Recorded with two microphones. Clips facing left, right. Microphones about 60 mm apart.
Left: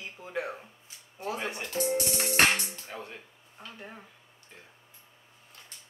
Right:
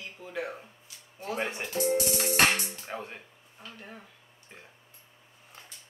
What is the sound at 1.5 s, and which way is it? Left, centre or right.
Music, centre.